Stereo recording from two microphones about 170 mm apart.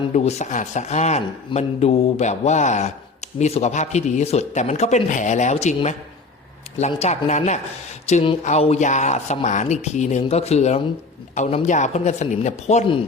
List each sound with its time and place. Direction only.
0.1 s speech: 40° left (ahead or behind)